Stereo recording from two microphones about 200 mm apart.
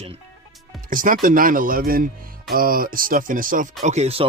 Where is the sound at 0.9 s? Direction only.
45° right (ahead or behind).